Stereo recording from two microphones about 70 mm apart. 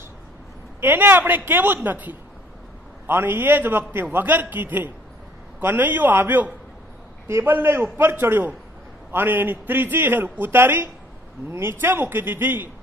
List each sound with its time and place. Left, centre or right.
0.7 s a man's voice: right